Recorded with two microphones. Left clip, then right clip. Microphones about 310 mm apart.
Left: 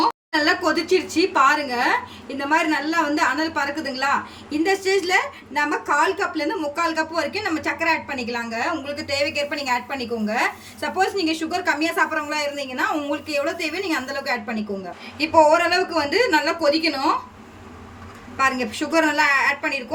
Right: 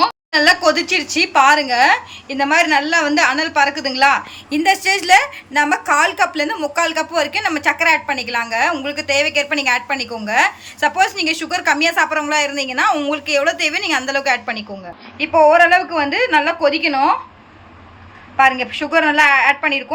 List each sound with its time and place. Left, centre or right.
0.0 s a woman's voice: centre
18.3 s a woman's voice: centre